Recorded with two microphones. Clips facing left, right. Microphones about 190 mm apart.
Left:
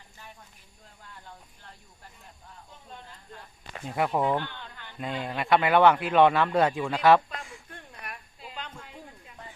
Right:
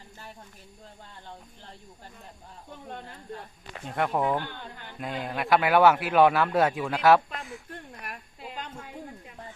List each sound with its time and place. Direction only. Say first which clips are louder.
2.6 s speech: right 8 dB; 60° right (ahead or behind)
3.8 s speech: even; 5° left (ahead or behind)
4.4 s a sound: right 3 dB; 45° right (ahead or behind)
4.9 s speech: even; centre (ahead or behind)